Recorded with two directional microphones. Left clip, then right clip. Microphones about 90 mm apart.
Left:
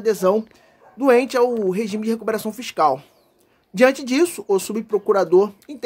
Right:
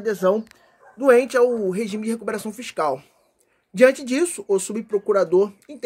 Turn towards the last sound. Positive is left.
turn(degrees=25)  # may be behind; listen again after turning